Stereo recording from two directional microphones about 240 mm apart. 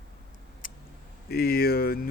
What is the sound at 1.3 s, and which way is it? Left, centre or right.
Speech, left.